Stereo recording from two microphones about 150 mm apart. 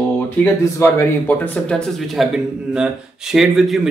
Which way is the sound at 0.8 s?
15° left (ahead or behind).